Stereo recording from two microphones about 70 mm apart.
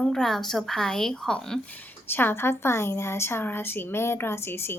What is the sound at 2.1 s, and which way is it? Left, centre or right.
A woman's voice, left.